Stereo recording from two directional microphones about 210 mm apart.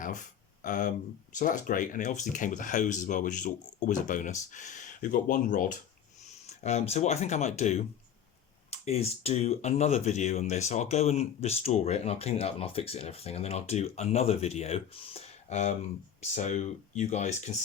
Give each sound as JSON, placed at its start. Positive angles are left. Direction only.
{"t": 0.6, "sound": "speech", "side_deg": 40}